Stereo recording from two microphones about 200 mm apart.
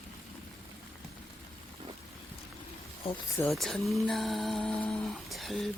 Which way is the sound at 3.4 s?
5° left (ahead or behind).